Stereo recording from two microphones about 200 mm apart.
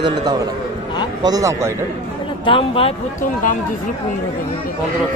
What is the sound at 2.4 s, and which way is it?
Speech, 25° left (ahead or behind).